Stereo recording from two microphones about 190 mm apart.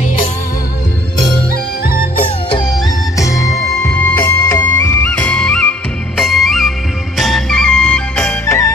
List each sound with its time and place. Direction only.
1.9 s music: 50° left (ahead or behind)
2.2 s music: 25° left (ahead or behind)